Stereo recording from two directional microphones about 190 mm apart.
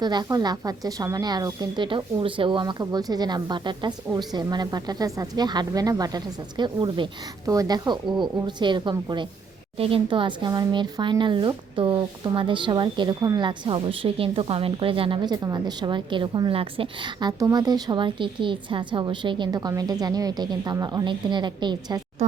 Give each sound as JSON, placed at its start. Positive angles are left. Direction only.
{"t": 0.0, "sound": "speech", "side_deg": -20}